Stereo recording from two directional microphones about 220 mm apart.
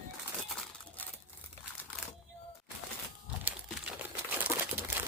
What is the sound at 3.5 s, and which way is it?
Crumpling, 5° right (ahead or behind).